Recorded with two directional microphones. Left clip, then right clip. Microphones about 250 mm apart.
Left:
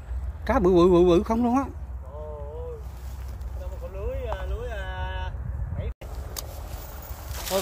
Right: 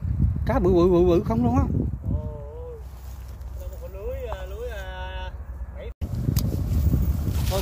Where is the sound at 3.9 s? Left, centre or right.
Right.